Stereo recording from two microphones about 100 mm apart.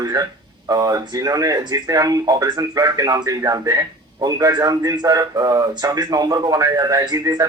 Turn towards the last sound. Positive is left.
turn(degrees=-40)  # may be behind; listen again after turning